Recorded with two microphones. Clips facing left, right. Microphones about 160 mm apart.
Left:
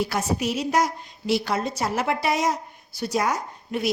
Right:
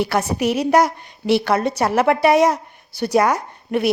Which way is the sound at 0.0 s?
65° right (ahead or behind).